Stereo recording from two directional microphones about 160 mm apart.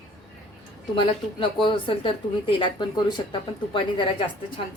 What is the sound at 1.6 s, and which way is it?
Speech, 35° left (ahead or behind).